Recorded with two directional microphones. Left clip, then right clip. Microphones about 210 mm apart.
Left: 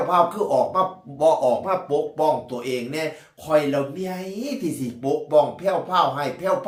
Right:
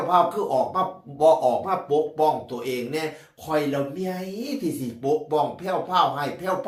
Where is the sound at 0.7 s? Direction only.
15° left (ahead or behind).